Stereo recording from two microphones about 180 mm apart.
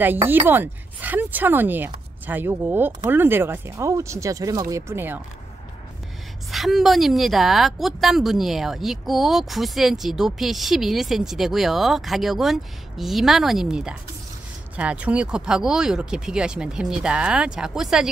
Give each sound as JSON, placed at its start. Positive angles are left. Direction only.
{"t": 0.0, "sound": "speech", "side_deg": -10}
{"t": 6.5, "sound": "speech", "side_deg": 0}